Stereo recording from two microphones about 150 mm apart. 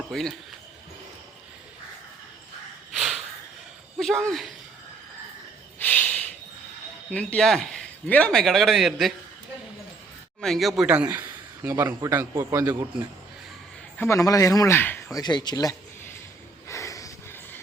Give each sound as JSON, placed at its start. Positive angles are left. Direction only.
{"t": 0.1, "sound": "a man's voice", "side_deg": 0}
{"t": 2.9, "sound": "snort", "side_deg": -5}
{"t": 3.9, "sound": "speech", "side_deg": 0}
{"t": 5.8, "sound": "a sound", "side_deg": 10}
{"t": 7.1, "sound": "a man's voice", "side_deg": 10}
{"t": 10.4, "sound": "a man's voice", "side_deg": 0}
{"t": 11.6, "sound": "a man's voice", "side_deg": -20}
{"t": 14.0, "sound": "speech", "side_deg": 20}
{"t": 15.2, "sound": "speech", "side_deg": 30}
{"t": 16.6, "sound": "a sound", "side_deg": 20}